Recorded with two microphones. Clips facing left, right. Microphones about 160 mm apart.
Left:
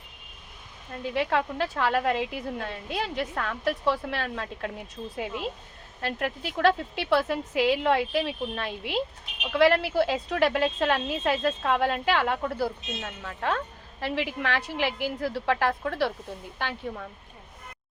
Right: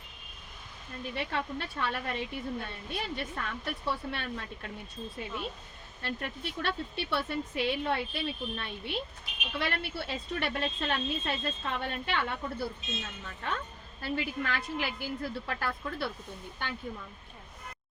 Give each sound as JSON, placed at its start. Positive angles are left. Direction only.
{"t": 1.1, "sound": "speech", "side_deg": 90}
{"t": 6.0, "sound": "speech", "side_deg": 90}